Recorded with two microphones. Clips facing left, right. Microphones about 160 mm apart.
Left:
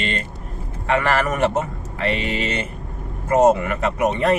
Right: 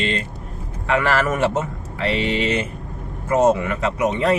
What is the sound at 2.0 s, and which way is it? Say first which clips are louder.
Speech: right 2 dB; 45° left (ahead or behind).